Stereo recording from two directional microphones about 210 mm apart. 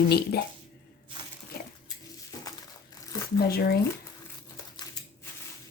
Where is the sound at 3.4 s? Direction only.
45° left (ahead or behind).